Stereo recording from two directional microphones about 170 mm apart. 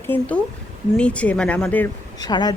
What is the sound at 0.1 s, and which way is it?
A woman's voice, 10° left (ahead or behind).